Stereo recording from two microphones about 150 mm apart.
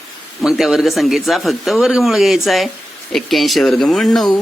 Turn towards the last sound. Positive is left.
turn(degrees=0)  # may be behind; listen again after turning